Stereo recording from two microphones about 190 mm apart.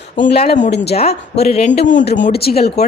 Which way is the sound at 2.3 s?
55° left (ahead or behind).